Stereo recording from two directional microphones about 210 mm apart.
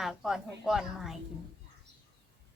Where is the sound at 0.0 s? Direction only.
Centre (ahead or behind).